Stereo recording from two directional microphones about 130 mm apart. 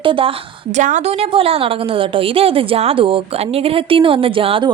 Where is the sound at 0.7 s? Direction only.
65° right (ahead or behind); by 4.7 s 45° right (ahead or behind).